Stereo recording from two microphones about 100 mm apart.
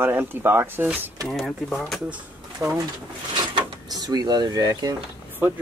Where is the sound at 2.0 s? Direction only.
15° right (ahead or behind).